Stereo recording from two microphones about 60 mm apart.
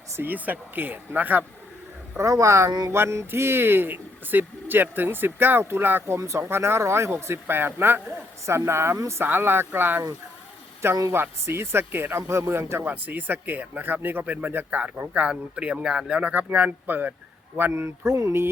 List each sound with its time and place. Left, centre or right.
0.2 s speech: right
2.1 s speech: right
6.1 s speech: right
6.4 s speech: right
7.4 s speech: right
9.2 s speech: right
11.1 s speech: right
12.3 s speech: right
12.8 s speech: right
16.3 s speech: right
17.7 s speech: right